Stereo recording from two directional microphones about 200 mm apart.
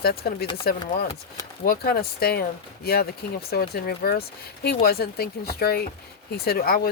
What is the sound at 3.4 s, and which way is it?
Speech, 50° left (ahead or behind).